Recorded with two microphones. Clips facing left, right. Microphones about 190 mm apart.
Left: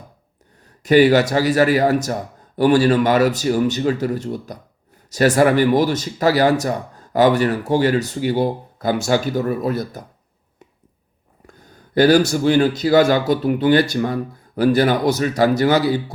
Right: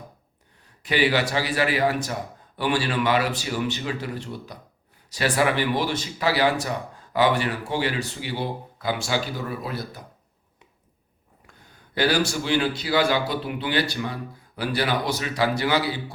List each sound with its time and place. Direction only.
0.8 s speech: 45° left (ahead or behind)
11.9 s speech: 45° left (ahead or behind)